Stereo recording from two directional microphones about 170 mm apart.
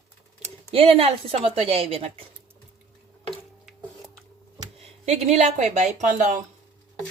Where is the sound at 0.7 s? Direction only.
35° right (ahead or behind).